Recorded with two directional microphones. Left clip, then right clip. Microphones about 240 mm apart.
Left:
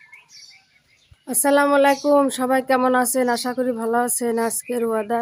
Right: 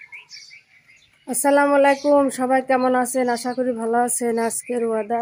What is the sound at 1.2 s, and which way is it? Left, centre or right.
Speech, centre.